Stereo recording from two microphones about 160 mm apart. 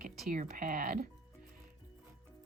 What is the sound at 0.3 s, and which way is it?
Speech, 55° right (ahead or behind).